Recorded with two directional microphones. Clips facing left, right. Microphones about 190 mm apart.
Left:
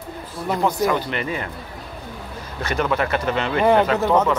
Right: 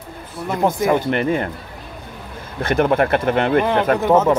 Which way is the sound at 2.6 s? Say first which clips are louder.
Right 6 dB; 55° right (ahead or behind).